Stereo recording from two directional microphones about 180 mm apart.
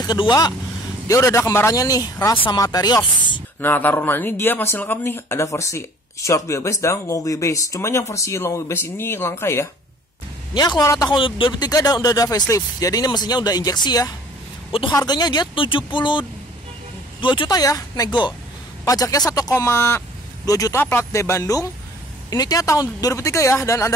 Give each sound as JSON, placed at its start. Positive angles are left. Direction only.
{"t": 0.0, "sound": "a man's voice", "side_deg": 25}